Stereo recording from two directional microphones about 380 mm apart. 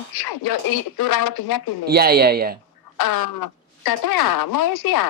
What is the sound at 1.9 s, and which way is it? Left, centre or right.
Speech, right.